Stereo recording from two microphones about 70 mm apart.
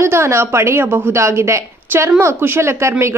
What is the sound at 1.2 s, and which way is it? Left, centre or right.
A woman's voice, right.